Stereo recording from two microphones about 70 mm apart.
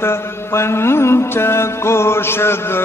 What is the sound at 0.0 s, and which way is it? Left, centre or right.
Mantra, left.